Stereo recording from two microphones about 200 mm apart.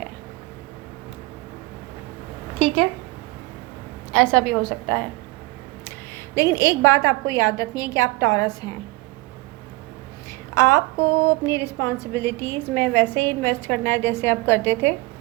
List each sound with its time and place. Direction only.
4.1 s a woman's voice: 5° left (ahead or behind)
6.3 s a woman's voice: 15° left (ahead or behind)
10.5 s a woman's voice: 15° left (ahead or behind)